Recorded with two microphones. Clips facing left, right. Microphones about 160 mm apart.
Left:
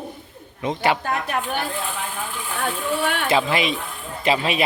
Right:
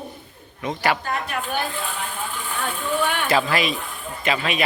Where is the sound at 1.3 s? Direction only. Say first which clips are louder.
Left 3 dB; 45° left (ahead or behind).